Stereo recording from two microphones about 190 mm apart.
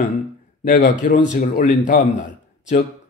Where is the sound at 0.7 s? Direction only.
45° left (ahead or behind).